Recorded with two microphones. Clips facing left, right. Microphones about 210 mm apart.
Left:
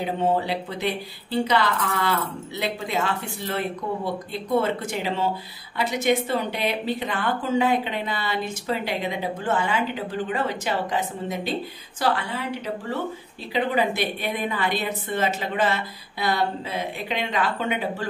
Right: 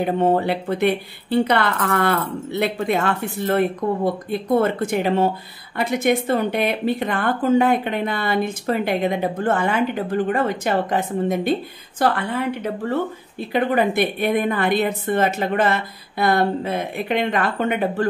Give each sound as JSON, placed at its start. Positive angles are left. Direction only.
{"t": 0.0, "sound": "speech", "side_deg": -55}